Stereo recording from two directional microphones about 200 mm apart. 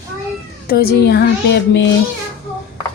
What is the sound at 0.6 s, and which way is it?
Speech, 50° left (ahead or behind).